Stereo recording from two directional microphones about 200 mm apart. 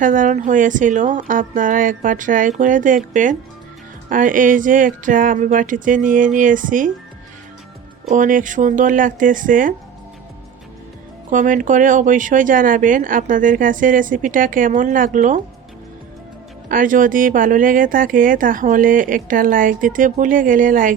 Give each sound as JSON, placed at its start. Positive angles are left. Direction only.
{"t": 0.0, "sound": "speech", "side_deg": -40}
{"t": 8.0, "sound": "speech", "side_deg": -40}
{"t": 11.3, "sound": "speech", "side_deg": -40}
{"t": 16.6, "sound": "speech", "side_deg": -40}